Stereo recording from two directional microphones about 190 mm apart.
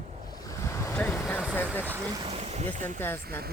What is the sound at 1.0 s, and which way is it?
Vehicle, 5° left (ahead or behind).